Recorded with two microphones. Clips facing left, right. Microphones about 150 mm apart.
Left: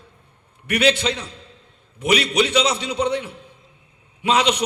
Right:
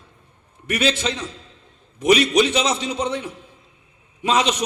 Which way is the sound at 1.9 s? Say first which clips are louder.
Right 3 dB; 65° left (ahead or behind).